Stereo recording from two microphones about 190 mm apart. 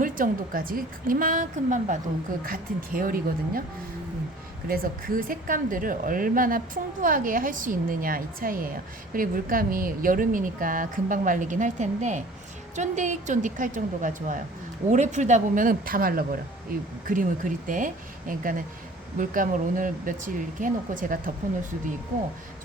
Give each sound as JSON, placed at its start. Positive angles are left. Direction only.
{"t": 0.0, "sound": "a woman's voice", "side_deg": -45}
{"t": 4.7, "sound": "a woman's voice", "side_deg": -50}